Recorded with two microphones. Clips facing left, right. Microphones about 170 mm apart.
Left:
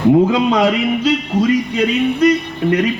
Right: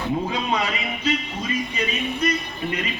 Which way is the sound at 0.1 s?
80° left.